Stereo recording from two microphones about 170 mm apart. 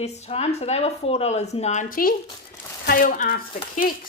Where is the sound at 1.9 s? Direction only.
60° left (ahead or behind).